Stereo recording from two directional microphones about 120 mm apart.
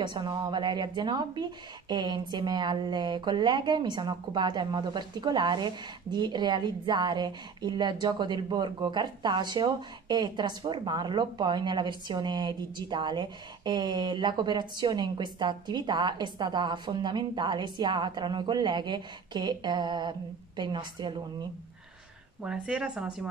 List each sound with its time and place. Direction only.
0.0 s a woman's voice: 40° right (ahead or behind)
22.4 s speech: 5° right (ahead or behind)